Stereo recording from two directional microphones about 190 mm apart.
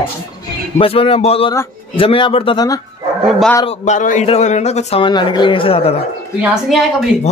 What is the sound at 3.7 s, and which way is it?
A man's voice, 40° left (ahead or behind).